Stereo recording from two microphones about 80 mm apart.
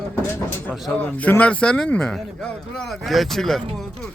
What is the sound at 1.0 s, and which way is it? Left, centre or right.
Speech, centre.